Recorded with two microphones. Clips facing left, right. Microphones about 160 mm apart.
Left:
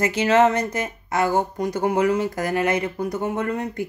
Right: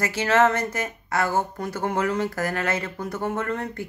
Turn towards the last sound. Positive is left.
turn(degrees=15)  # may be behind; listen again after turning